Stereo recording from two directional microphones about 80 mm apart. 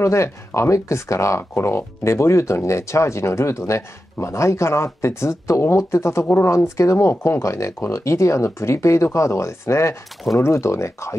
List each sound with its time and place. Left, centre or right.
0.0 s speech: left